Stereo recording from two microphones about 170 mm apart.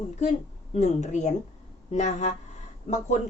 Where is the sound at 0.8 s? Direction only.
45° left (ahead or behind).